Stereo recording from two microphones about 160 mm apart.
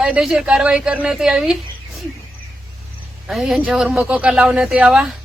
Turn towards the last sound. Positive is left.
turn(degrees=-5)  # may be behind; listen again after turning